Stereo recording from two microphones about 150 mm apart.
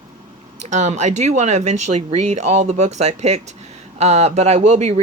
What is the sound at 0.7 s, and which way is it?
Speech, 50° right (ahead or behind).